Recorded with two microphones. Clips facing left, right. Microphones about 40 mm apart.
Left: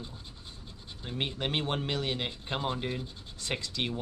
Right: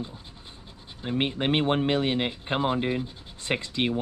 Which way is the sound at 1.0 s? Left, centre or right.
Right.